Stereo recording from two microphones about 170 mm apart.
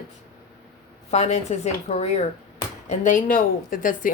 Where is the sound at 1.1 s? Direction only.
40° left (ahead or behind).